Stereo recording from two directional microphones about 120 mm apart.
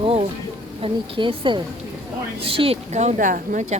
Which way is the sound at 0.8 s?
50° right (ahead or behind).